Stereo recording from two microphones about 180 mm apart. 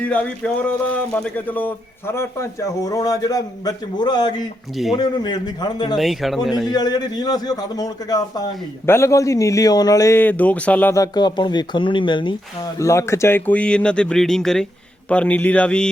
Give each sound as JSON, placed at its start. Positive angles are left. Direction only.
{"t": 0.0, "sound": "a man's voice", "side_deg": 5}
{"t": 6.0, "sound": "speech", "side_deg": 0}
{"t": 6.7, "sound": "a man's voice", "side_deg": 20}
{"t": 12.8, "sound": "speech", "side_deg": 15}